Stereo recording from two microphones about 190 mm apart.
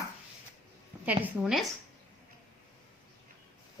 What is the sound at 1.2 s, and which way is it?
Speech, centre (ahead or behind).